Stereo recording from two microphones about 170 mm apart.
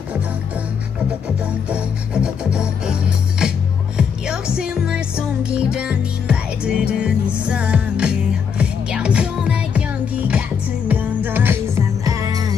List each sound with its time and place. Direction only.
1.7 s music: 5° right (ahead or behind)
4.6 s music: 5° right (ahead or behind); by 12.5 s 20° right (ahead or behind)